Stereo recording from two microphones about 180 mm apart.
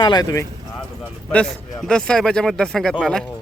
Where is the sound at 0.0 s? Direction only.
25° left (ahead or behind).